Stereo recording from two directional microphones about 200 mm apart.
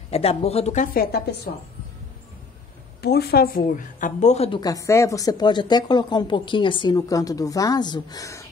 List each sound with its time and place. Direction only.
0.1 s speech: 30° left (ahead or behind)
0.9 s a woman's voice: 50° left (ahead or behind)
3.0 s a woman's voice: 55° left (ahead or behind); by 8.5 s 15° left (ahead or behind)